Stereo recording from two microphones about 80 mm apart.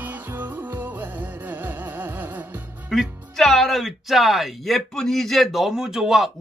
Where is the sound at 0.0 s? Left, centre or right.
Right.